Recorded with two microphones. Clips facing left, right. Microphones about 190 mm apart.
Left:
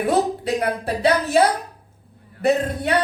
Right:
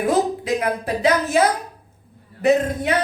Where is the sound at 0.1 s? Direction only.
35° left (ahead or behind).